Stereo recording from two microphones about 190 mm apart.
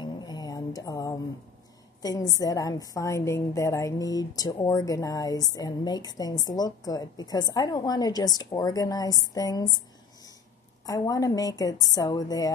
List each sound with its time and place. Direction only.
0.0 s a sound: 20° left (ahead or behind)
2.0 s a woman's voice: 20° left (ahead or behind)
10.9 s a woman's voice: 20° left (ahead or behind)